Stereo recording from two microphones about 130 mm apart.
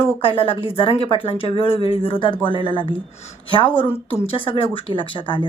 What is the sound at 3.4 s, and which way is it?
A woman's voice, 40° left (ahead or behind).